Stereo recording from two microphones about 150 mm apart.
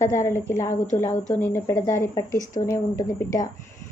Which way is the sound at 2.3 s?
60° left (ahead or behind).